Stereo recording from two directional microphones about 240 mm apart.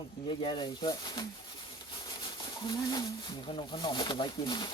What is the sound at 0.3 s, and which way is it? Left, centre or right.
Speech, left.